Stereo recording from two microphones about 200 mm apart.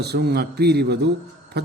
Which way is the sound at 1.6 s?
55° right (ahead or behind).